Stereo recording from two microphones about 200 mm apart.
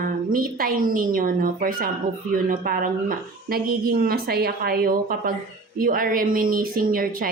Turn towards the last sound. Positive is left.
turn(degrees=-45)  # may be behind; listen again after turning